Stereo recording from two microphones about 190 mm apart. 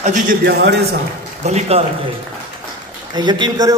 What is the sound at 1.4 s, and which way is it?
Speech, 35° right (ahead or behind).